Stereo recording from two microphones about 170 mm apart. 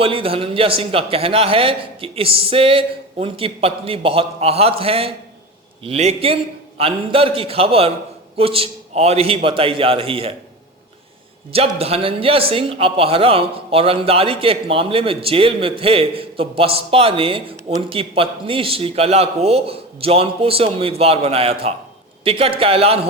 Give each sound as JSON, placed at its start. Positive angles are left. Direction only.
{"t": 0.0, "sound": "speech", "side_deg": -35}
{"t": 11.8, "sound": "speech", "side_deg": -35}